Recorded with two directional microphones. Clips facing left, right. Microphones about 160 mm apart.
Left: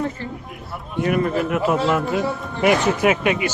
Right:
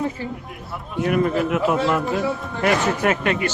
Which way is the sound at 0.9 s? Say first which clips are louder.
Even; centre (ahead or behind).